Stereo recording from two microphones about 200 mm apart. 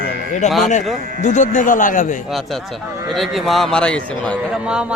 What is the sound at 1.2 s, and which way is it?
Speech, 35° left (ahead or behind).